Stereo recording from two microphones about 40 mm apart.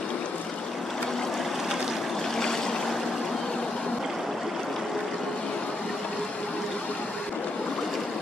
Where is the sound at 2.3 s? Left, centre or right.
Centre.